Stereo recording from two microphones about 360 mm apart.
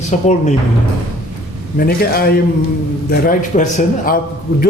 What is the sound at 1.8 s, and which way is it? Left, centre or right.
Speech, left.